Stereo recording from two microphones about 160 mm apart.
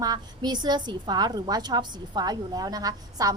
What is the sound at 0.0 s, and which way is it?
A woman's voice, 25° right (ahead or behind).